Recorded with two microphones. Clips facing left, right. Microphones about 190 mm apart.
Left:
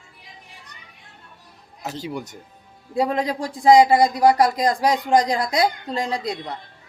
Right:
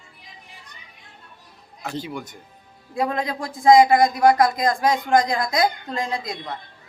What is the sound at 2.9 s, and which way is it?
Speech, 35° left (ahead or behind).